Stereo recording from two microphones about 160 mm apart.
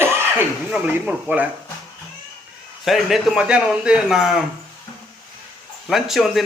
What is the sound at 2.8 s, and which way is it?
Speech, centre (ahead or behind).